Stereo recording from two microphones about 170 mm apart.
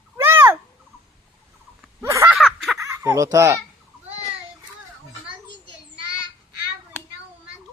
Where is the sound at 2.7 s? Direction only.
15° right (ahead or behind).